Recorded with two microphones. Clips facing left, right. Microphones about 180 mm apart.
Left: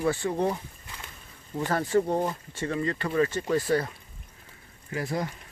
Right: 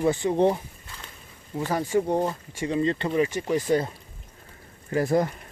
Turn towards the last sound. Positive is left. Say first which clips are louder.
# right 8 dB
turn(degrees=-45)  # may be behind; listen again after turning